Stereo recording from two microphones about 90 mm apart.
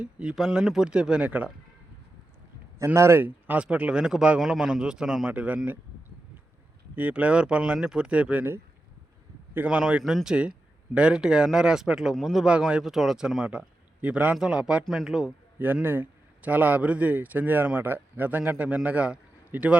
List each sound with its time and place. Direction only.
0.0 s speech: 10° right (ahead or behind)
2.7 s speech: 35° right (ahead or behind); by 5.7 s 15° right (ahead or behind)
6.9 s speech: 15° right (ahead or behind)
15.5 s speech: 20° right (ahead or behind)